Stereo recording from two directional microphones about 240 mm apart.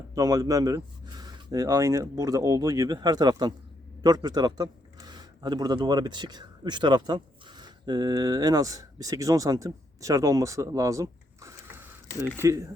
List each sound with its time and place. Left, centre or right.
0.1 s a man's voice: centre